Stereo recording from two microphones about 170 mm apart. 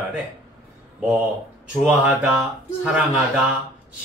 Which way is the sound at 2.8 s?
5° right (ahead or behind).